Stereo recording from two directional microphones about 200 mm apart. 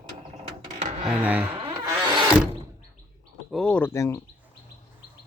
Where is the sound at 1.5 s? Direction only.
25° right (ahead or behind).